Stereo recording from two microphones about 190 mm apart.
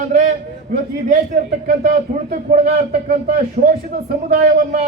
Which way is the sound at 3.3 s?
50° right (ahead or behind).